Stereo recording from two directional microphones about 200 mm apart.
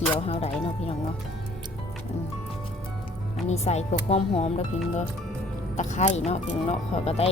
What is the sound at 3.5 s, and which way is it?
Speech, 35° left (ahead or behind).